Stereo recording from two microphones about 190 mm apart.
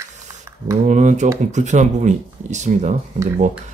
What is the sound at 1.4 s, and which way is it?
A man's voice, 40° right (ahead or behind).